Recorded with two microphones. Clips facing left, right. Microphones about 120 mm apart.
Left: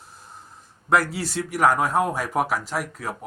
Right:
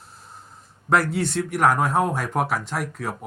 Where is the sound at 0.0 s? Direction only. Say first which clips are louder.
Even; centre (ahead or behind).